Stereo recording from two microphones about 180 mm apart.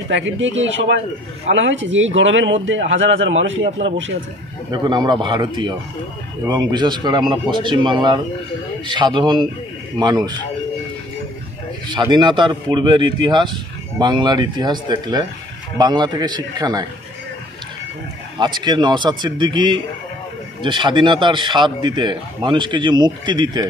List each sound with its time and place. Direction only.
0.1 s a man's voice: 90° right
4.6 s speech: 25° right (ahead or behind)
11.9 s speech: 25° right (ahead or behind)
18.4 s speech: 25° right (ahead or behind)